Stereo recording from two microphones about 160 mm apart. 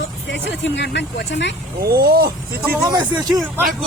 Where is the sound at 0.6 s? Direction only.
90° left.